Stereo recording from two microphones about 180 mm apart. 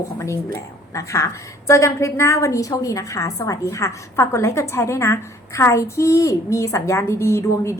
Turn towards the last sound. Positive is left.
turn(degrees=15)  # may be behind; listen again after turning